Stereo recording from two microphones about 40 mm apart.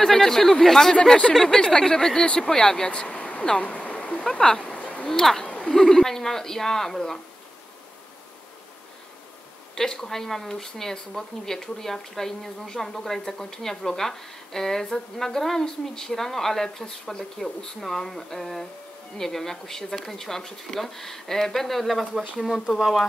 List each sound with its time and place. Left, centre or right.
0.0 s speech: centre; by 3.4 s left
3.6 s a sound: left
4.3 s speech: left
5.1 s speech: centre
5.4 s speech: centre
9.8 s speech: centre